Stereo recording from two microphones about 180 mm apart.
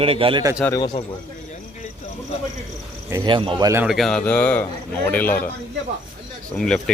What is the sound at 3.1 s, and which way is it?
Speech, 25° right (ahead or behind).